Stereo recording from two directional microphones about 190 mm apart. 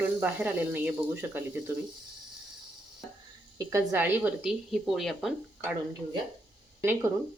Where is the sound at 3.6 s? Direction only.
10° right (ahead or behind).